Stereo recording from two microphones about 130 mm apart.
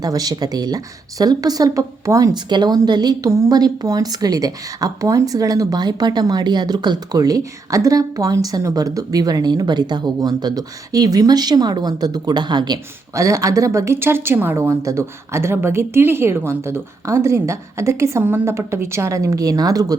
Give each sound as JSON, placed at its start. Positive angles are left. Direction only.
{"t": 0.0, "sound": "speech", "side_deg": -30}